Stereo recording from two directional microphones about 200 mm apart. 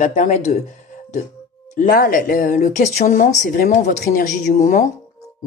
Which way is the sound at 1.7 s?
45° left (ahead or behind).